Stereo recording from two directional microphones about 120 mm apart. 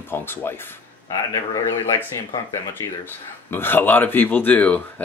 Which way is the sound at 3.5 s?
15° left (ahead or behind).